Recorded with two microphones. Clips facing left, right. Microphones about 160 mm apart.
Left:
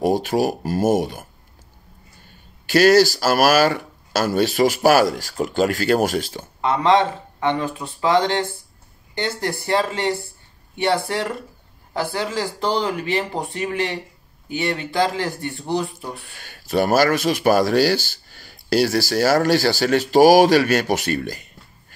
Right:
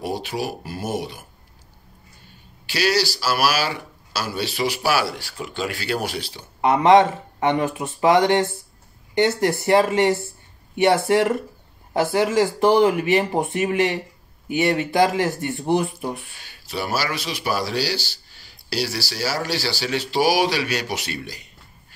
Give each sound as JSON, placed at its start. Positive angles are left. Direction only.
{"t": 0.0, "sound": "speech", "side_deg": 45}
{"t": 2.6, "sound": "speech", "side_deg": 45}
{"t": 6.6, "sound": "speech", "side_deg": -20}
{"t": 16.3, "sound": "speech", "side_deg": 50}